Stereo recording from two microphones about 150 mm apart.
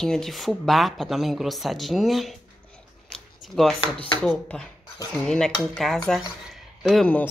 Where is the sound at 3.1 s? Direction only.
5° left (ahead or behind).